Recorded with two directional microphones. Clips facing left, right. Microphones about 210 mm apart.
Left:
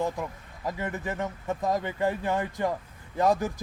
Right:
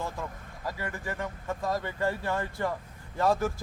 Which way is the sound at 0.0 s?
20° left (ahead or behind).